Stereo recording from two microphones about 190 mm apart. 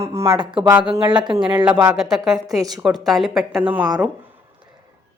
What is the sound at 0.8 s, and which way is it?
Speech, 25° right (ahead or behind).